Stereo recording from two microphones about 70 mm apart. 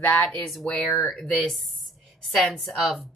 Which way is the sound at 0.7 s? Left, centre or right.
Centre.